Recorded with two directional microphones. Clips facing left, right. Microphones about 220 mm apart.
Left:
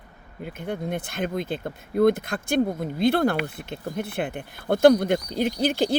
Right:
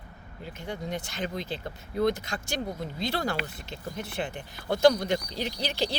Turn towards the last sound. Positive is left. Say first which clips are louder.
# left 8 dB
turn(degrees=50)  # may be behind; listen again after turning